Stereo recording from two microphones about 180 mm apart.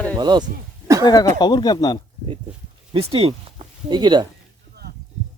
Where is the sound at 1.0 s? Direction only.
20° left (ahead or behind).